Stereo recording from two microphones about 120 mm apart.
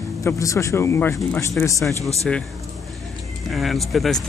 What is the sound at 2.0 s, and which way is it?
Speech, 25° right (ahead or behind).